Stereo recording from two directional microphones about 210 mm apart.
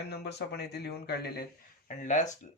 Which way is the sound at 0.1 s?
50° left (ahead or behind).